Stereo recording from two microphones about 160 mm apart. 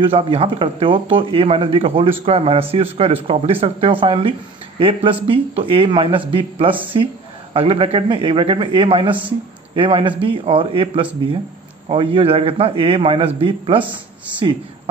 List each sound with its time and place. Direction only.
0.0 s speech: 35° right (ahead or behind)